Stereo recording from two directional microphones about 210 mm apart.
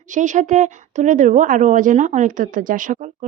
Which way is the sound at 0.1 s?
35° right (ahead or behind).